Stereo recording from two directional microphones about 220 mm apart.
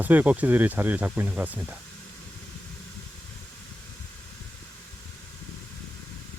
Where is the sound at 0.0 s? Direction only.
10° right (ahead or behind).